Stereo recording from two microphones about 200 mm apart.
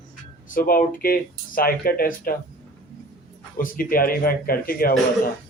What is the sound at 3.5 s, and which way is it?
Speech, 45° left (ahead or behind).